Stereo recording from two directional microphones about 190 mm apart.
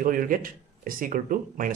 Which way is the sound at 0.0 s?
45° right (ahead or behind).